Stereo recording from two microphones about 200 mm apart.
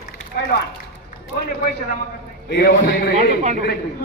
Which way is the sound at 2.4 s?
55° left (ahead or behind).